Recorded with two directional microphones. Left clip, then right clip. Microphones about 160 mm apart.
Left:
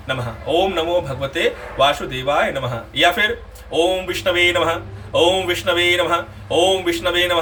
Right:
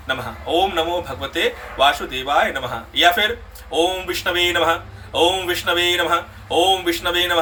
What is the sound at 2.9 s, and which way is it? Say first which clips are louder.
Speech: even; 20° left (ahead or behind).